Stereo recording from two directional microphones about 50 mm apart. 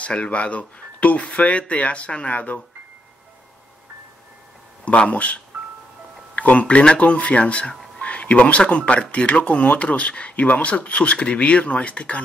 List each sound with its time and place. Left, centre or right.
0.0 s speech: left
4.8 s speech: left